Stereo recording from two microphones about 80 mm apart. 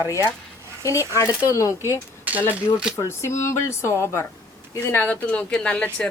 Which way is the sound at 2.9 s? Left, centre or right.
Left.